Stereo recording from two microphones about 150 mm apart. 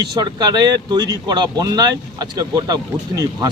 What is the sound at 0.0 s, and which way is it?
Speech, 30° right (ahead or behind).